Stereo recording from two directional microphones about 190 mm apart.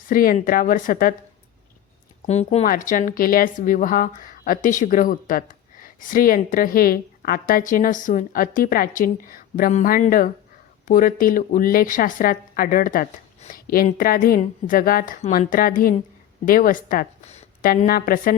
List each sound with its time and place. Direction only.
0.1 s a woman's voice: 45° left (ahead or behind)
2.2 s a woman's voice: 35° left (ahead or behind)
17.2 s a sound: 35° left (ahead or behind)
17.8 s a woman's voice: 50° left (ahead or behind)